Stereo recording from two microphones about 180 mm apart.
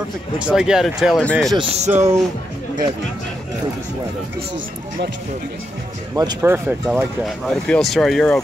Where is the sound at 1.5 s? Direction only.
35° right (ahead or behind).